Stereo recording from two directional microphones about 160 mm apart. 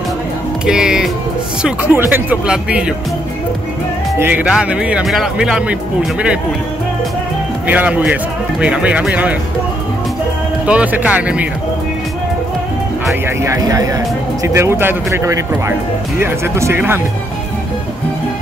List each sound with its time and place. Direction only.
0.7 s speech: 5° right (ahead or behind)
4.2 s speech: 10° right (ahead or behind)
7.6 s speech: 10° right (ahead or behind)
10.7 s speech: 10° right (ahead or behind)
13.1 s speech: 20° right (ahead or behind)